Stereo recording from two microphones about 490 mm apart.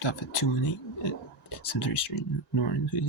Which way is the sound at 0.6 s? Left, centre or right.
Left.